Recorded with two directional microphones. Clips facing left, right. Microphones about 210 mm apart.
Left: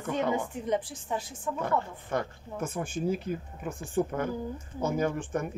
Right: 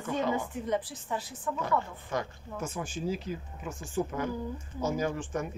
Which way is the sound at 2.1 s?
55° left (ahead or behind).